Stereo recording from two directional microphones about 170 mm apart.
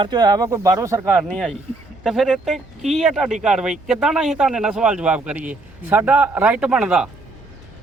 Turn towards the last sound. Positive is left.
turn(degrees=-5)  # may be behind; listen again after turning